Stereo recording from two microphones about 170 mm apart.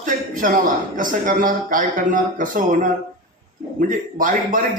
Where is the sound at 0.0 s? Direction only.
50° right (ahead or behind).